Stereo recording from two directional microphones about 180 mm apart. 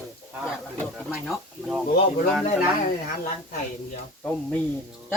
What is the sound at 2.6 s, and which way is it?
Speech, 55° left (ahead or behind).